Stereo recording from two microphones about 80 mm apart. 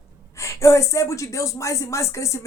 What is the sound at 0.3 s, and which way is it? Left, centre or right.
Speech, left.